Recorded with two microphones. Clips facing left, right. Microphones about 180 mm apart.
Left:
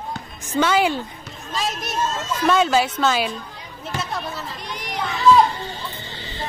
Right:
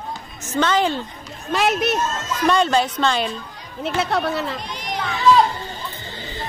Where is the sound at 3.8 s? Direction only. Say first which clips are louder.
Right 7 dB; 70° right (ahead or behind).